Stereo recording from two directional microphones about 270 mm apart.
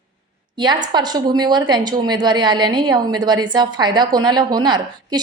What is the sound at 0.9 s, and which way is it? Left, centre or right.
A woman's voice, centre.